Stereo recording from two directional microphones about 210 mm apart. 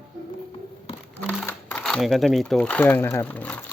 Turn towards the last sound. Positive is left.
turn(degrees=10)  # may be behind; listen again after turning